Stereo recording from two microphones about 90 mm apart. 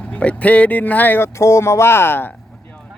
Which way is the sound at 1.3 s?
35° left (ahead or behind).